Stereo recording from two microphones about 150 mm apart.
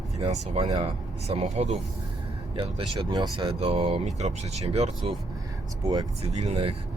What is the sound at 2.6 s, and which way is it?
Speech, 35° right (ahead or behind).